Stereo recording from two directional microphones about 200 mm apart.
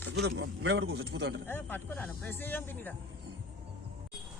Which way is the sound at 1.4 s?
10° left (ahead or behind).